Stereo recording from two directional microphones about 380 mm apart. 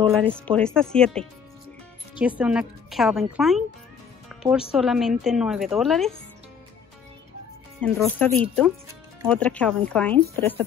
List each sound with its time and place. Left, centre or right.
0.1 s speech: centre
7.8 s speech: centre